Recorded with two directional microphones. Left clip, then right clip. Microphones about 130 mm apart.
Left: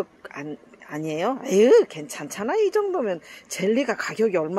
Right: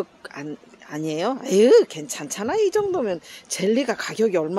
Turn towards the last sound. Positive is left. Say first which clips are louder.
# right 1 dB
turn(degrees=-15)  # may be behind; listen again after turning